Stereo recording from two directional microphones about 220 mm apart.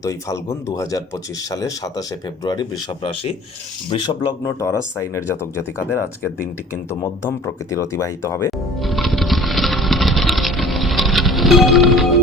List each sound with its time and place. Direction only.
0.0 s speech: 15° left (ahead or behind)
7.0 s speech: 15° left (ahead or behind)
8.8 s a sound: centre (ahead or behind)